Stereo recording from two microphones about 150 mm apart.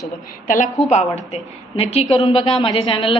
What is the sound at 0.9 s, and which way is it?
A woman's voice, 50° left (ahead or behind).